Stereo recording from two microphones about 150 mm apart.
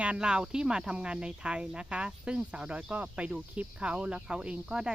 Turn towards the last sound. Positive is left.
turn(degrees=-5)  # may be behind; listen again after turning